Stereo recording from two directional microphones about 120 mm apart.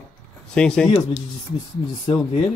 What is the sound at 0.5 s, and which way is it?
Speech, 10° left (ahead or behind).